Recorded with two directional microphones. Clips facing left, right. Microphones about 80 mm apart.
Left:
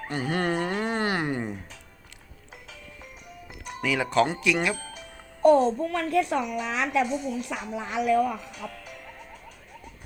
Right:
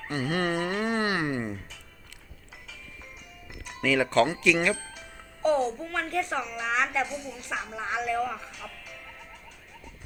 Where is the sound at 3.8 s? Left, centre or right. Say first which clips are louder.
Right 1 dB; centre.